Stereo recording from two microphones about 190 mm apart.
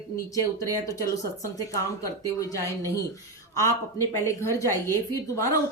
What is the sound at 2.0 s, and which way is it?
Speech, 15° left (ahead or behind).